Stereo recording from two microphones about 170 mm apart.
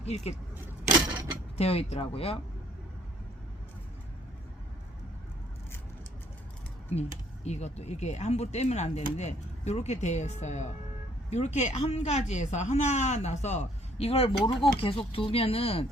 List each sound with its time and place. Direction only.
0.0 s a woman's voice: 40° left (ahead or behind)
1.5 s a woman's voice: 35° left (ahead or behind)
7.4 s a woman's voice: 40° left (ahead or behind)